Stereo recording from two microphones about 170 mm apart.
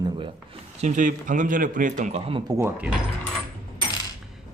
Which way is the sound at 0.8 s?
45° right (ahead or behind).